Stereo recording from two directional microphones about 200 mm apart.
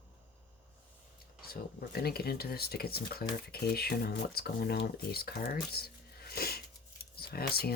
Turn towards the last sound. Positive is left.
turn(degrees=50)  # may be behind; listen again after turning